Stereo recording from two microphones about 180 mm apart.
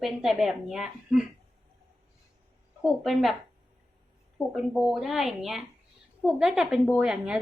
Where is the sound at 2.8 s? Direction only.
Centre (ahead or behind).